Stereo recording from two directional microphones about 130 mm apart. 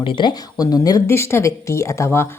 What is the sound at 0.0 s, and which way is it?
Speech, 40° left (ahead or behind).